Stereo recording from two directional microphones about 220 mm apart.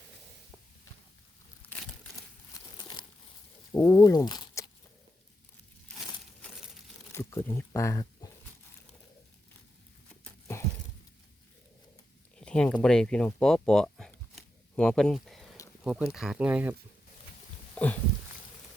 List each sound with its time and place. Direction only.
2.7 s a sound: 20° left (ahead or behind)
3.7 s speech: 10° left (ahead or behind)
7.1 s speech: 10° left (ahead or behind)
12.4 s a sound: 5° left (ahead or behind)
15.8 s speech: centre (ahead or behind)
17.7 s speech: 5° left (ahead or behind)